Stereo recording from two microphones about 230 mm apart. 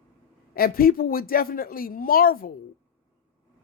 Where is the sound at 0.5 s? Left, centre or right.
Left.